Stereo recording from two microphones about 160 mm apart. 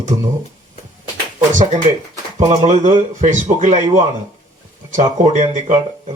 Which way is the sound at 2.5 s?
45° right (ahead or behind).